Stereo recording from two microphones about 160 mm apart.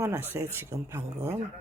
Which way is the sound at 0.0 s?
15° right (ahead or behind).